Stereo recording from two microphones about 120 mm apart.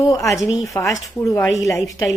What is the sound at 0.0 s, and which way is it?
Speech, 25° left (ahead or behind).